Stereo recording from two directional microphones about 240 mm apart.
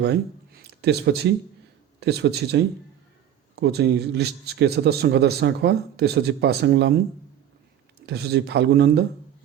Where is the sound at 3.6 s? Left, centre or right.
Right.